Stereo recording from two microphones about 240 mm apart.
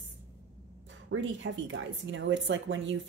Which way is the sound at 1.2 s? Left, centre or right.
Right.